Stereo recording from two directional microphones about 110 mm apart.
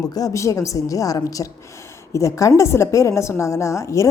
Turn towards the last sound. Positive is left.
turn(degrees=30)  # may be behind; listen again after turning